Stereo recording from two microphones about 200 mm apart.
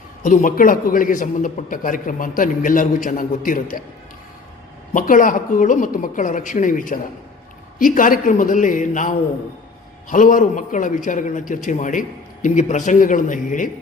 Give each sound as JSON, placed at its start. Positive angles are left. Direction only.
{"t": 0.2, "sound": "a man's voice", "side_deg": 40}
{"t": 4.9, "sound": "a man's voice", "side_deg": 40}